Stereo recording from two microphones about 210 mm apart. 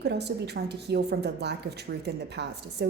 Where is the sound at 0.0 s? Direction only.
55° right (ahead or behind).